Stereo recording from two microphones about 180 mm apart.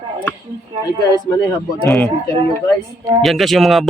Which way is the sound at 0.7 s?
25° right (ahead or behind).